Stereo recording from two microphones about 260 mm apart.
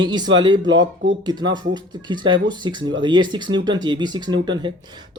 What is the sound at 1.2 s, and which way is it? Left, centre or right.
Speech, centre.